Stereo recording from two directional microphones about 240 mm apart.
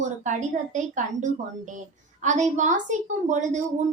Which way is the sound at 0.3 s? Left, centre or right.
Right.